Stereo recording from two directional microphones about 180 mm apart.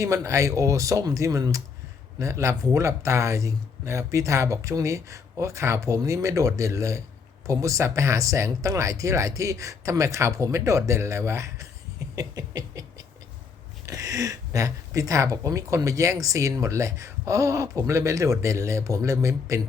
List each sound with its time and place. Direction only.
0.0 s speech: 15° right (ahead or behind)
12.1 s a sound: 20° right (ahead or behind)
13.8 s speech: 20° right (ahead or behind)